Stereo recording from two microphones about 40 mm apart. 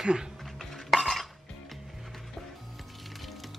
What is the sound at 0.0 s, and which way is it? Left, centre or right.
Speech, centre.